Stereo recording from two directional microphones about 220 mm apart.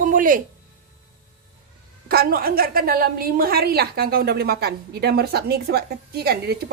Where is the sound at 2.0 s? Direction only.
45° right (ahead or behind).